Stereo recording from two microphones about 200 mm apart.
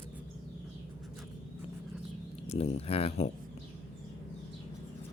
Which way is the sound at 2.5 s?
30° left (ahead or behind).